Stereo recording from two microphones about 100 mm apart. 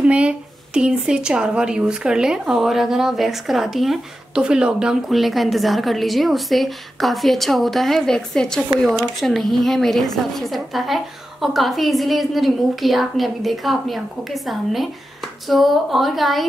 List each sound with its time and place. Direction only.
0.1 s speech: 10° right (ahead or behind)